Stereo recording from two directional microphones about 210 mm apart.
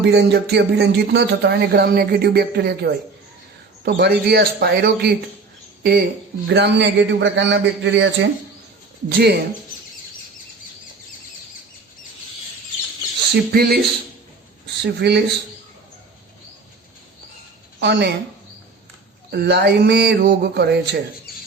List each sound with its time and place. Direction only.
0.0 s a man's voice: 50° right (ahead or behind)
13.3 s speech: 50° right (ahead or behind)
17.7 s speech: 55° right (ahead or behind)
19.3 s speech: 50° right (ahead or behind)